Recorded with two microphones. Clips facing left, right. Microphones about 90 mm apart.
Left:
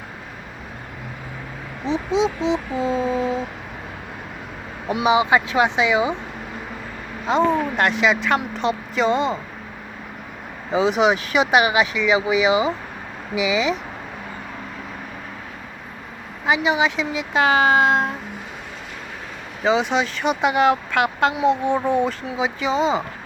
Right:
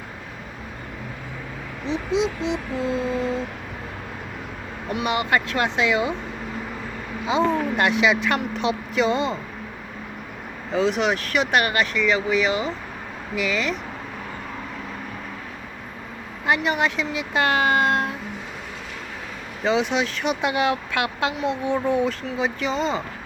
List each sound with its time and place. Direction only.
1.8 s speech: 35° left (ahead or behind)
2.5 s speech: 5° left (ahead or behind)
5.0 s speech: 5° left (ahead or behind)
7.3 s speech: centre (ahead or behind)
10.7 s speech: 5° left (ahead or behind)
16.5 s speech: centre (ahead or behind)
19.6 s speech: centre (ahead or behind)